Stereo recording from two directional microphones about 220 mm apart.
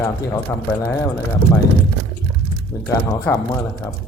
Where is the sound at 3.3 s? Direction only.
5° left (ahead or behind).